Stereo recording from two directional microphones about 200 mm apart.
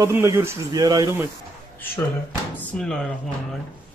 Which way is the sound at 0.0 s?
15° right (ahead or behind).